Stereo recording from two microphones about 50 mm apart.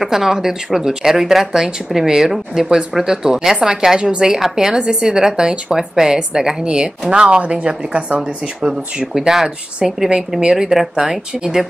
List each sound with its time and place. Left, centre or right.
0.0 s a woman's voice: centre; by 8.2 s right
8.2 s speech: centre
10.5 s speech: centre